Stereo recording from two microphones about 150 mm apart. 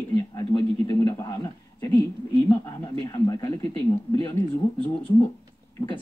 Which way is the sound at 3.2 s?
25° left (ahead or behind).